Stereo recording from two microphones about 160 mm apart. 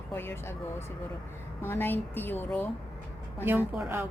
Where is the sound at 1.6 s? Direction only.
15° left (ahead or behind).